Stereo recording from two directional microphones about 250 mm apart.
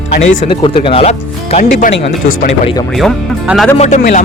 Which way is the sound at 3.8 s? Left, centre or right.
Left.